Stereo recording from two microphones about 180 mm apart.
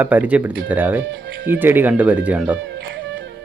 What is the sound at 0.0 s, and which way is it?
Speech, 10° right (ahead or behind).